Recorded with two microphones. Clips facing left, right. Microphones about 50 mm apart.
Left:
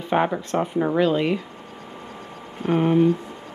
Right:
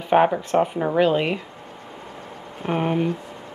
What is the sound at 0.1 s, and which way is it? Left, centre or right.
Speech, centre.